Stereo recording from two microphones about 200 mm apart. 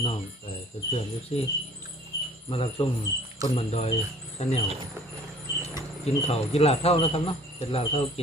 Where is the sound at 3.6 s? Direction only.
30° left (ahead or behind).